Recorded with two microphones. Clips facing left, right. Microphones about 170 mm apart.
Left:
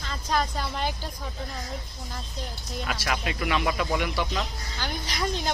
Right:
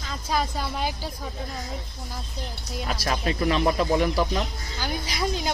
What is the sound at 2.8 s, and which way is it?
A man's voice, 35° right (ahead or behind).